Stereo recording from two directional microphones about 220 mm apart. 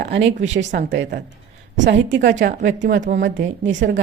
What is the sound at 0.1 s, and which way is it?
Speech, 55° right (ahead or behind).